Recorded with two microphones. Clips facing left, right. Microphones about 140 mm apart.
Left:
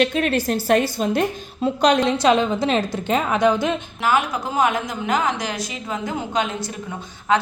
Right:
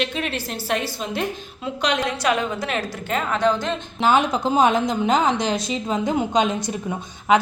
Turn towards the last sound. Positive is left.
turn(degrees=-15)  # may be behind; listen again after turning